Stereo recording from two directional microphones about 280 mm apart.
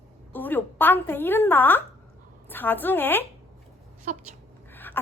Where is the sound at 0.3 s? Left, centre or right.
Centre.